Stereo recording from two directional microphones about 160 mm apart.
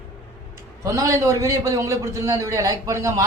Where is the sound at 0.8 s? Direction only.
20° right (ahead or behind).